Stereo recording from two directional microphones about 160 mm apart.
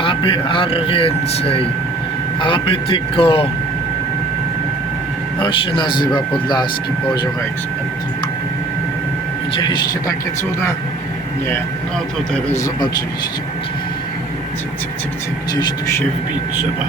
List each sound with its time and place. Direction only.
0.0 s speech: 30° left (ahead or behind)
5.4 s speech: 30° left (ahead or behind)
9.6 s speech: 25° left (ahead or behind)
12.5 s speech: 20° left (ahead or behind)